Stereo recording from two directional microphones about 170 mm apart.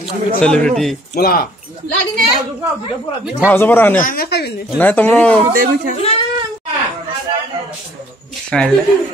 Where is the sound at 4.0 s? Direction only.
55° left (ahead or behind); by 4.6 s 75° left (ahead or behind).